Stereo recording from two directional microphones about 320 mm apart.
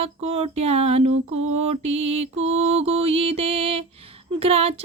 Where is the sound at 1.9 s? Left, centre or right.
Centre.